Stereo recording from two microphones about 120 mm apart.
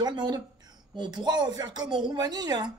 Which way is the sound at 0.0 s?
35° right (ahead or behind).